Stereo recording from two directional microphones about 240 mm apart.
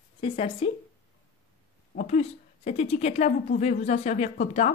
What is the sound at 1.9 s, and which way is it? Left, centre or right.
Speech, left.